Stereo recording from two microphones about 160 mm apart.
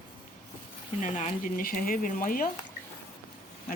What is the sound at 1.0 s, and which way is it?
Speech, 50° left (ahead or behind).